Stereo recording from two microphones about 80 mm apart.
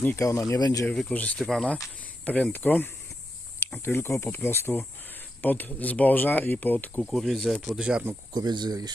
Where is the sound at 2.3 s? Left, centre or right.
Centre.